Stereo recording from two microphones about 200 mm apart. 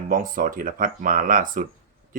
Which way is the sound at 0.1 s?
45° right (ahead or behind).